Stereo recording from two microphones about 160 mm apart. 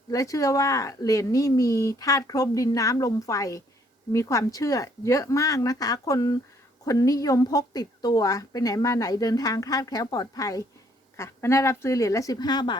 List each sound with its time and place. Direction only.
0.1 s a woman's voice: 20° left (ahead or behind)